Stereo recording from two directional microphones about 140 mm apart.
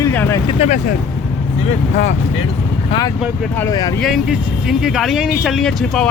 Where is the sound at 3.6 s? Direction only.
25° left (ahead or behind).